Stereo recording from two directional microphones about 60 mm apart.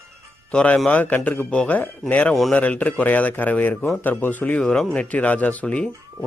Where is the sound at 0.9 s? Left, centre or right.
Left.